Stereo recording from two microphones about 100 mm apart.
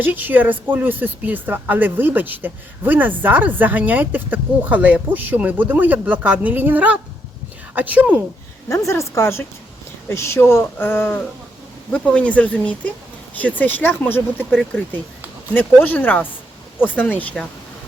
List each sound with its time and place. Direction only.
0.0 s speech: 20° right (ahead or behind)
8.7 s speech: 30° left (ahead or behind)
11.9 s speech: 10° left (ahead or behind)